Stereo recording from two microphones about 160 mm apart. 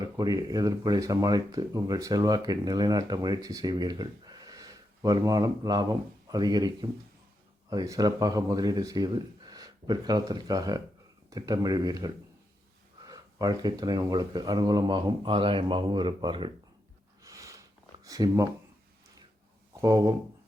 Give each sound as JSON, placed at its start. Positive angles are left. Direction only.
{"t": 0.0, "sound": "speech", "side_deg": -25}
{"t": 17.2, "sound": "a sound", "side_deg": -20}
{"t": 18.0, "sound": "speech", "side_deg": -20}
{"t": 19.7, "sound": "speech", "side_deg": -20}